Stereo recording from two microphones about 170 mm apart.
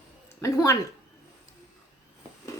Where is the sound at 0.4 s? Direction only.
20° left (ahead or behind).